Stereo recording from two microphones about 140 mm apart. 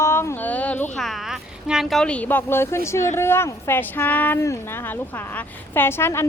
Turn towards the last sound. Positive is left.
turn(degrees=15)  # may be behind; listen again after turning